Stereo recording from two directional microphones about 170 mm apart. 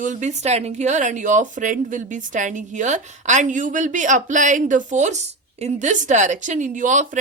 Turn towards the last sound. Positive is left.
turn(degrees=-45)  # may be behind; listen again after turning